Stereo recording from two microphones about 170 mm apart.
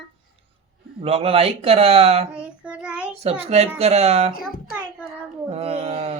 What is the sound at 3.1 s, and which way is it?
Speech, 40° right (ahead or behind).